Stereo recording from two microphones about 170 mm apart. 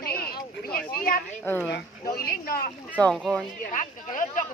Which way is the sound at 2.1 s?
60° left (ahead or behind).